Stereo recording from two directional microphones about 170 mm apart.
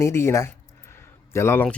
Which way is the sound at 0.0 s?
15° left (ahead or behind).